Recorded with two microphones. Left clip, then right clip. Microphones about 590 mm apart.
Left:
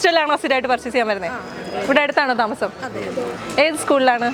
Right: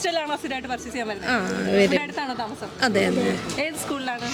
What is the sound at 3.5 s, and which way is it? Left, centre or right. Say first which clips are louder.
Speech: left 12 dB; left.